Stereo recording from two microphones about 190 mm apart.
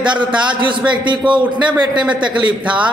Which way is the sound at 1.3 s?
25° right (ahead or behind).